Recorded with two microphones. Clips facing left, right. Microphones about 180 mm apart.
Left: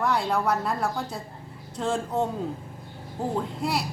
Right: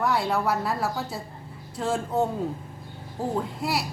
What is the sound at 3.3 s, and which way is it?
Speech, centre (ahead or behind).